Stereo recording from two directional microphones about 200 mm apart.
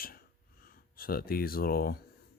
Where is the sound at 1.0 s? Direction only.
45° left (ahead or behind).